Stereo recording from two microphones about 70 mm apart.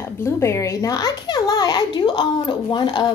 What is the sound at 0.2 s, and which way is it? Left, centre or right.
A child's voice, left.